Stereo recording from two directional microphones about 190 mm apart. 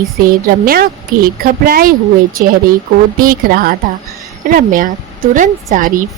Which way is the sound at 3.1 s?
50° right (ahead or behind).